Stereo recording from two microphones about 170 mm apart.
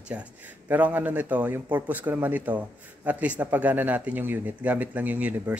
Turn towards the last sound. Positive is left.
turn(degrees=-10)  # may be behind; listen again after turning